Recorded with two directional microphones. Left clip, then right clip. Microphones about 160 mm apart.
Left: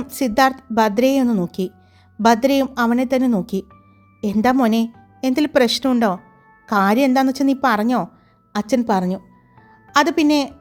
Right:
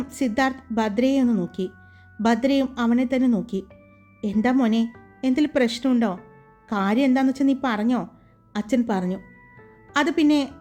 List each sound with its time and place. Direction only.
0.0 s a woman's voice: 40° left (ahead or behind)